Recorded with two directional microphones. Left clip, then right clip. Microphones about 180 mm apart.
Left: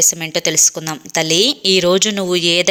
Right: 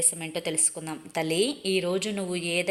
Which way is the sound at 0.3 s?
35° left (ahead or behind).